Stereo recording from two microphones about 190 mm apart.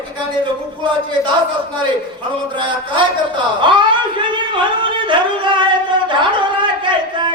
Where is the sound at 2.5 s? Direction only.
25° right (ahead or behind).